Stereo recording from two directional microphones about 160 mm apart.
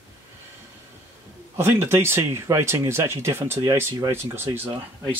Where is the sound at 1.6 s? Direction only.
15° right (ahead or behind).